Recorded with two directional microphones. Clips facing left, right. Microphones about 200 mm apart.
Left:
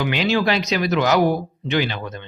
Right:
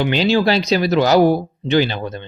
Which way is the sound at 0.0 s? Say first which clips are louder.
Right 4 dB; 30° right (ahead or behind).